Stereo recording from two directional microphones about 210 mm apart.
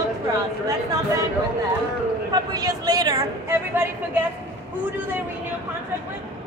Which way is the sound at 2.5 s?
20° right (ahead or behind).